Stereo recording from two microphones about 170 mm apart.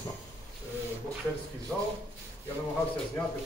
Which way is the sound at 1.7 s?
10° left (ahead or behind).